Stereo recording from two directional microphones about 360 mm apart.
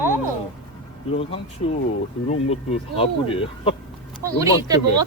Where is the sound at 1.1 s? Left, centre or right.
Centre.